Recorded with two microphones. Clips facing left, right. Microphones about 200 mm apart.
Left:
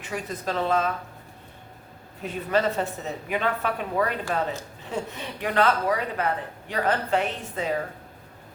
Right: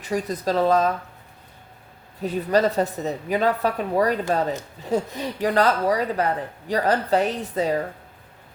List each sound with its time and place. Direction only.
0.0 s speech: 35° right (ahead or behind)
2.2 s speech: 35° right (ahead or behind)